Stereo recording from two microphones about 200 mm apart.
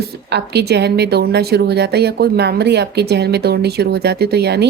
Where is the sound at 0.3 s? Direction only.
55° right (ahead or behind).